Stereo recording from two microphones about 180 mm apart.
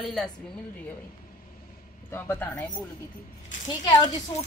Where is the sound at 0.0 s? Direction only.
Centre (ahead or behind).